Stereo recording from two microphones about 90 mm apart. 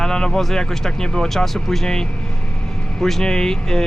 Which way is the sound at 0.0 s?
5° left (ahead or behind).